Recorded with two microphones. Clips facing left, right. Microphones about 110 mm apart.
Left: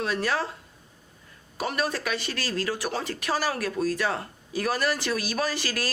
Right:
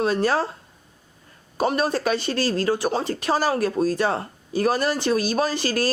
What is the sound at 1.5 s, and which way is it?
Speech, 30° right (ahead or behind).